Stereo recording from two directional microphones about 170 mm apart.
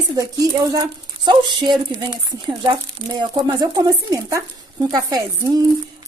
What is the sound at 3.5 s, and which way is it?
A woman's voice, 20° right (ahead or behind).